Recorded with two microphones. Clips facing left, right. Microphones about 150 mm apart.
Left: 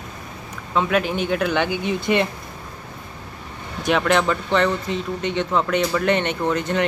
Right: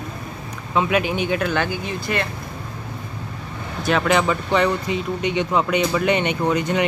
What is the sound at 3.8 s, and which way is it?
Speech, centre (ahead or behind).